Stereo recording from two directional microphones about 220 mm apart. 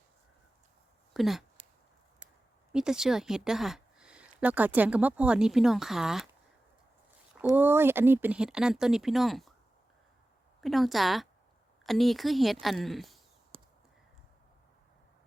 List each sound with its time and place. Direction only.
1.1 s speech: centre (ahead or behind)
2.7 s a woman's voice: 5° right (ahead or behind)
7.4 s a woman's voice: 10° right (ahead or behind)
10.6 s a woman's voice: centre (ahead or behind)
13.5 s a sound: 25° right (ahead or behind)